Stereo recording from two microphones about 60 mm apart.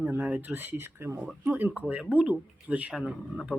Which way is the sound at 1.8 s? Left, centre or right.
Right.